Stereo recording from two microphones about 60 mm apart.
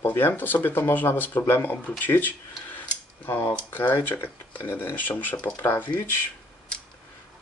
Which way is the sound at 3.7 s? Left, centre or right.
Left.